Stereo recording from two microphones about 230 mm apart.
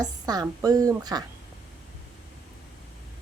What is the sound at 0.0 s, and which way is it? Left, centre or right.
A woman's voice, centre.